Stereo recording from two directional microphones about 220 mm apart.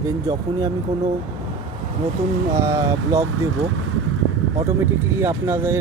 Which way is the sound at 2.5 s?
15° right (ahead or behind).